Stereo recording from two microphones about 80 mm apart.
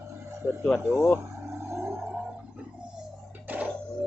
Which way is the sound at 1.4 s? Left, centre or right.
Right.